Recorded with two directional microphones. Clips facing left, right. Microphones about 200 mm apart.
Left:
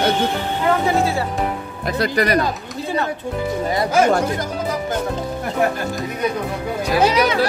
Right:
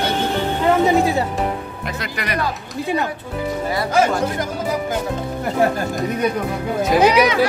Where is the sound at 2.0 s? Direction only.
40° left (ahead or behind).